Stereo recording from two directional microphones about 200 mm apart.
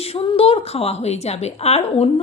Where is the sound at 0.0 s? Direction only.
30° left (ahead or behind).